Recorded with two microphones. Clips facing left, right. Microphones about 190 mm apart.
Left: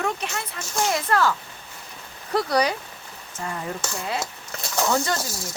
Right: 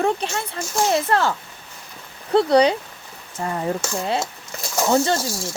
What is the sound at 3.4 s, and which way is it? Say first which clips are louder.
Speech: right 6 dB; 40° right (ahead or behind).